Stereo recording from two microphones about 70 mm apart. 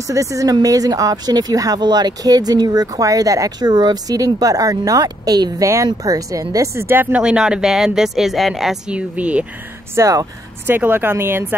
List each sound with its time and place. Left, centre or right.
0.0 s speech: right
7.2 s speech: centre
8.9 s speech: centre
9.9 s speech: right
10.7 s speech: right